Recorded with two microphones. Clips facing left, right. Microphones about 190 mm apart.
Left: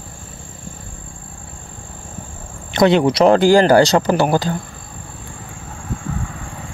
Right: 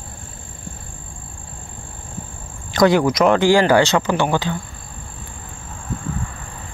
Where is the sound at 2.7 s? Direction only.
25° left (ahead or behind); by 4.6 s 40° left (ahead or behind).